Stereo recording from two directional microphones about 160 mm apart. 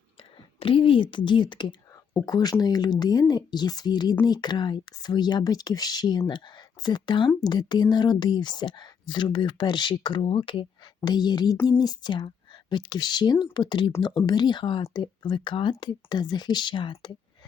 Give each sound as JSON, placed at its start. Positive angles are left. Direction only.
{"t": 0.6, "sound": "speech", "side_deg": 35}